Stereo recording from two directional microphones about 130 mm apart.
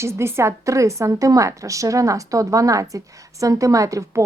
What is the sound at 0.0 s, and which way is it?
Speech, 20° right (ahead or behind).